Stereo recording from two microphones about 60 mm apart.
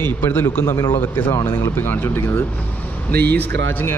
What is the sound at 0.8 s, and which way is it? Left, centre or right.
Speech, left.